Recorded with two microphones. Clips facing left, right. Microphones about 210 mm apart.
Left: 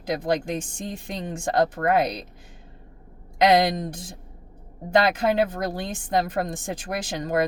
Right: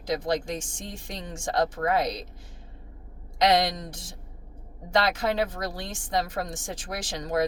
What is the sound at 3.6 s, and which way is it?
A woman's voice, 55° left (ahead or behind).